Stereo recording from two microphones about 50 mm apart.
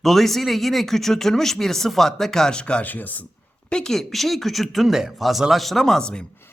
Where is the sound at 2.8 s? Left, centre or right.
Left.